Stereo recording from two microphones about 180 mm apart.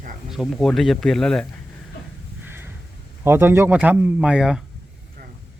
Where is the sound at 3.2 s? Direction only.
15° right (ahead or behind).